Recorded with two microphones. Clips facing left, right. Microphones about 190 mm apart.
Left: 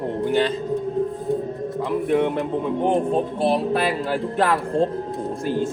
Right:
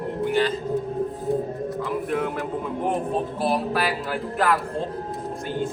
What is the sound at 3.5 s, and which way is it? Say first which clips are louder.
Speech: left 3 dB; 25° left (ahead or behind).